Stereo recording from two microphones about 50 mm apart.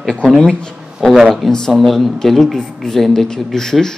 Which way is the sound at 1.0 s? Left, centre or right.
Centre.